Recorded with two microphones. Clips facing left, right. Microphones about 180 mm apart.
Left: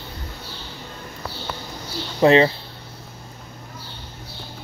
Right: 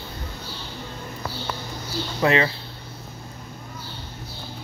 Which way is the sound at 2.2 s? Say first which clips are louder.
Left 6 dB; 30° left (ahead or behind).